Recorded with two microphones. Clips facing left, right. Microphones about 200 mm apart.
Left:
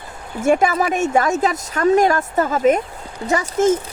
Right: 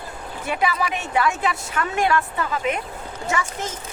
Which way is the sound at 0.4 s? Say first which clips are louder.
Left 8 dB; 45° left (ahead or behind).